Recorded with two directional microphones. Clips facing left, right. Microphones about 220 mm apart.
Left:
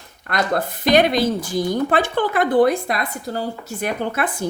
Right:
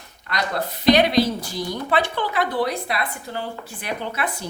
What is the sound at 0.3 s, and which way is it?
A woman's voice, 50° left (ahead or behind).